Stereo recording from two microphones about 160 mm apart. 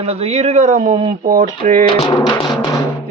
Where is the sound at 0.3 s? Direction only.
45° right (ahead or behind).